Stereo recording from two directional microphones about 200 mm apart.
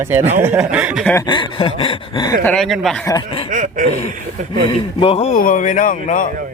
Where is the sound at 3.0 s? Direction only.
20° left (ahead or behind).